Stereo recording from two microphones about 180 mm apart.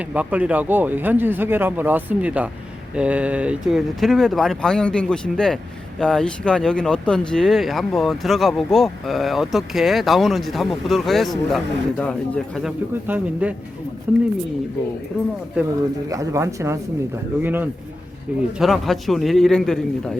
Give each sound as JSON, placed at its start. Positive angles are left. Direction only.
{"t": 0.1, "sound": "speech", "side_deg": -10}
{"t": 13.1, "sound": "speech", "side_deg": -10}
{"t": 16.0, "sound": "speech", "side_deg": -15}